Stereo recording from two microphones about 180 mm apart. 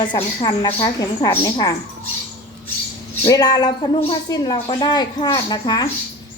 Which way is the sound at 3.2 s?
20° left (ahead or behind).